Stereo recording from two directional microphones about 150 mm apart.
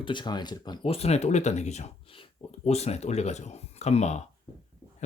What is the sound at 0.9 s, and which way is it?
Speech, 45° left (ahead or behind).